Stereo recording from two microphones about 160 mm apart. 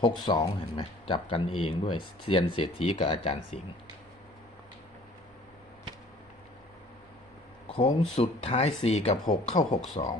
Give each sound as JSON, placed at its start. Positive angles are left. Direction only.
{"t": 0.3, "sound": "speech", "side_deg": 25}
{"t": 7.7, "sound": "speech", "side_deg": 40}
{"t": 9.3, "sound": "speech", "side_deg": 55}
{"t": 10.0, "sound": "speech", "side_deg": 40}